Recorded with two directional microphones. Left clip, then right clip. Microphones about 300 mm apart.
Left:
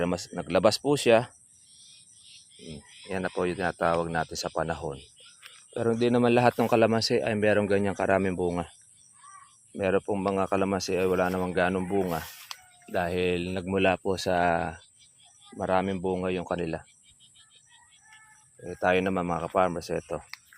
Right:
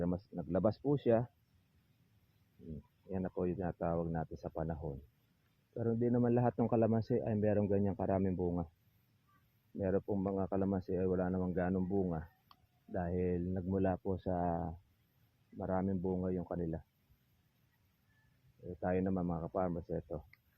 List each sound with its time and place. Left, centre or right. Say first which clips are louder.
0.0 s speech: left 11 dB; left
0.9 s speech: left 11 dB; centre
3.1 s speech: left 10 dB; centre
9.7 s speech: left 10 dB; centre
12.9 s speech: left 11 dB; centre
18.8 s speech: left 12 dB; centre